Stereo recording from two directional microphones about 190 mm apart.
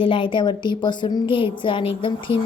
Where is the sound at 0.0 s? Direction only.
25° left (ahead or behind).